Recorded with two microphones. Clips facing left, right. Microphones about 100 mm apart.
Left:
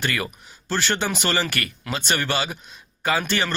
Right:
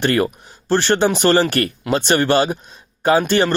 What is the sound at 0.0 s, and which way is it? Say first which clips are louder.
Speech: right 10 dB; 50° right (ahead or behind).